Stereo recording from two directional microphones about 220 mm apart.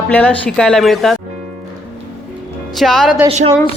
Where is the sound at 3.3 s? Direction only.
30° right (ahead or behind).